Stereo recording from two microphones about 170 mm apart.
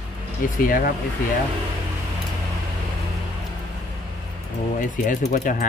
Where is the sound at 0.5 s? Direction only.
55° left (ahead or behind).